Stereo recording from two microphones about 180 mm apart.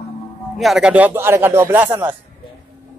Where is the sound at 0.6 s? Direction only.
Centre (ahead or behind).